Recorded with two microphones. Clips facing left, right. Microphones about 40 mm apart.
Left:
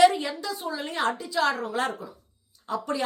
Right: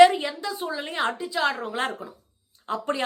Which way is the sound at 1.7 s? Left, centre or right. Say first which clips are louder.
Even; right.